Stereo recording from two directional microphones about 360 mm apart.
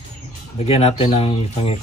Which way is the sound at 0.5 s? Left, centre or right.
Centre.